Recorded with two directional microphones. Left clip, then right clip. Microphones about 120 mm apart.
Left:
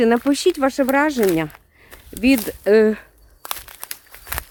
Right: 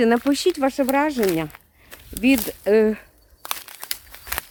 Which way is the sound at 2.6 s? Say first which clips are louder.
Left 4 dB; 35° left (ahead or behind).